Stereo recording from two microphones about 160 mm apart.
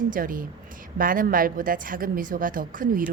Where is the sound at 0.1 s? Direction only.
60° right (ahead or behind).